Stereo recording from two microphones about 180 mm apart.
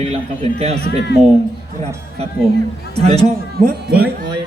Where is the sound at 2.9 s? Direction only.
35° right (ahead or behind).